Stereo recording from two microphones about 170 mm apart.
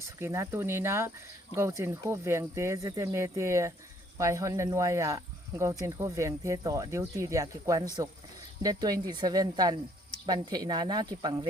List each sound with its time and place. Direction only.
0.2 s speech: 15° right (ahead or behind)